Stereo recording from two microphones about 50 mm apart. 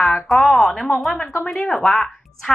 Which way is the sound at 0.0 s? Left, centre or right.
Left.